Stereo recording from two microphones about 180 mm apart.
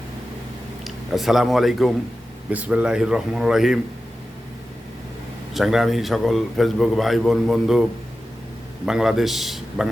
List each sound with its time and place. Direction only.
0.9 s a man's voice: centre (ahead or behind)
5.5 s a man's voice: centre (ahead or behind)
8.9 s a man's voice: centre (ahead or behind)